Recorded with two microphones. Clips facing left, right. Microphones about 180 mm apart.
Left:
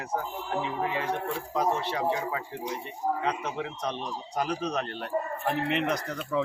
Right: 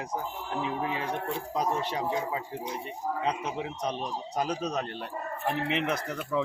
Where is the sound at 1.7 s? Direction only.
15° right (ahead or behind).